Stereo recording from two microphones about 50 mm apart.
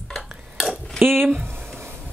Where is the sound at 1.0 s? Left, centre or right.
Right.